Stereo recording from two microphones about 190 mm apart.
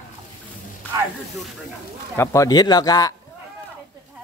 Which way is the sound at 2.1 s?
15° left (ahead or behind).